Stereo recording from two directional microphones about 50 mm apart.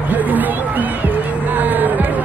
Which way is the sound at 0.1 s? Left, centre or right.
Right.